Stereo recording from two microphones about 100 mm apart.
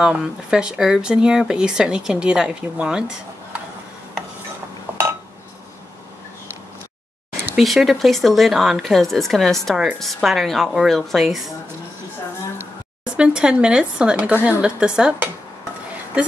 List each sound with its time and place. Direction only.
0.0 s speech: 10° right (ahead or behind)
4.9 s chink: 20° right (ahead or behind)
7.5 s speech: centre (ahead or behind)
13.0 s speech: 10° right (ahead or behind)